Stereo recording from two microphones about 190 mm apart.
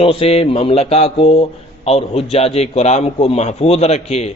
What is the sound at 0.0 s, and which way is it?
Speech, 30° left (ahead or behind).